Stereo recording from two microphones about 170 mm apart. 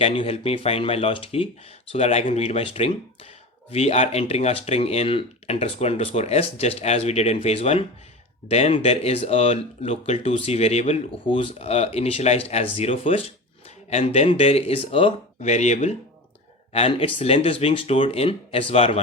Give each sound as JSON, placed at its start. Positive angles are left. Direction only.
{"t": 0.0, "sound": "speech", "side_deg": 35}